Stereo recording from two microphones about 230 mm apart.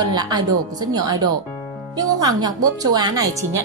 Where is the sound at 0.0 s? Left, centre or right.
Centre.